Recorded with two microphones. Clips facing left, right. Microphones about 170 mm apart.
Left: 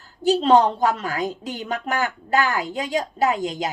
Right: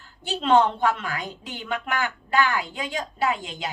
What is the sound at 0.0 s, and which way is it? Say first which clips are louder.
A woman's voice: left 10 dB; 40° left (ahead or behind).